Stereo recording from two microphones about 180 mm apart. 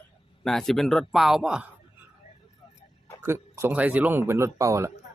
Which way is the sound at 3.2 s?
15° right (ahead or behind).